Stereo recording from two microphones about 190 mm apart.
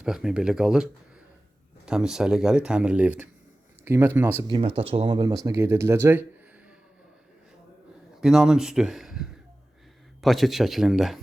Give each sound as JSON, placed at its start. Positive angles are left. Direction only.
{"t": 0.0, "sound": "speech", "side_deg": -5}
{"t": 4.4, "sound": "speech", "side_deg": -25}
{"t": 8.2, "sound": "speech", "side_deg": 0}